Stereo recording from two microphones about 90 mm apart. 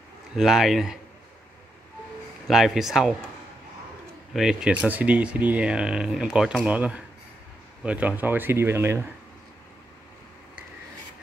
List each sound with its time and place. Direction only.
0.4 s speech: 5° right (ahead or behind)
2.4 s speech: 5° right (ahead or behind)
4.3 s speech: 5° right (ahead or behind)
4.7 s speech: 20° right (ahead or behind)